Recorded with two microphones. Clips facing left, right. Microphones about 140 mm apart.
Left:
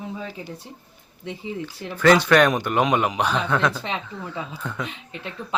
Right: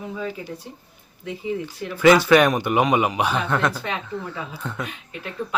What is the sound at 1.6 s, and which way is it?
Speech, 10° right (ahead or behind).